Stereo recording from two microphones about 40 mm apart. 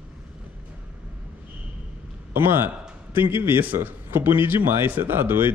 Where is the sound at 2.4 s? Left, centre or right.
Right.